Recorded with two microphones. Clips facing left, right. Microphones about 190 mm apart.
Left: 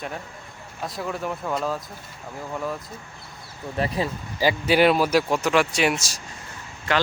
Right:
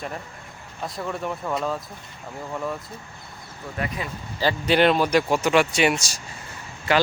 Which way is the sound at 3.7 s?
30° left (ahead or behind).